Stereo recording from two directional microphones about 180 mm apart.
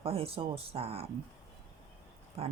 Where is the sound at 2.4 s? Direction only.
30° right (ahead or behind).